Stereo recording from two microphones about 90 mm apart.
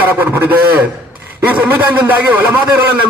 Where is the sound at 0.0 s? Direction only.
20° right (ahead or behind).